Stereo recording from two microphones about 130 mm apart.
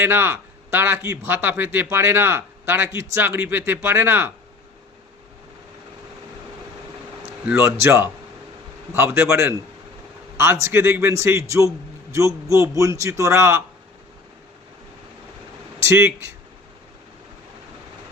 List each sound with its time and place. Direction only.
0.0 s a man's voice: 20° right (ahead or behind)
7.4 s a man's voice: 20° right (ahead or behind)
15.8 s a man's voice: 20° right (ahead or behind)